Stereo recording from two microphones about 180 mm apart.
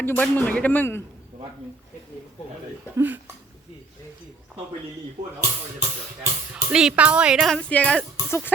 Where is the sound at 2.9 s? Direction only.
10° right (ahead or behind).